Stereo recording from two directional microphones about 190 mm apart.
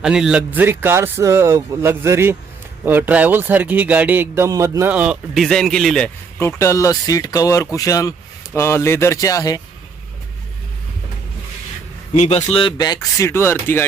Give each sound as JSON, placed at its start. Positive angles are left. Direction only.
{"t": 0.0, "sound": "speech", "side_deg": -5}
{"t": 12.1, "sound": "speech", "side_deg": 35}